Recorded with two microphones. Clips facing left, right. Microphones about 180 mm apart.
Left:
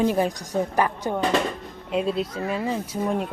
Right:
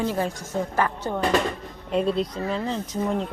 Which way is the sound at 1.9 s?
Centre (ahead or behind).